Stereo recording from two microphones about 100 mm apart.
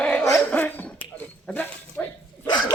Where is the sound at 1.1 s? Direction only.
15° left (ahead or behind).